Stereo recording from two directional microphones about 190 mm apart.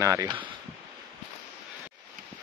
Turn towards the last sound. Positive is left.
turn(degrees=-20)  # may be behind; listen again after turning